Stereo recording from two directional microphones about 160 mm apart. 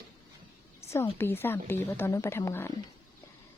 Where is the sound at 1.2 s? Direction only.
15° left (ahead or behind).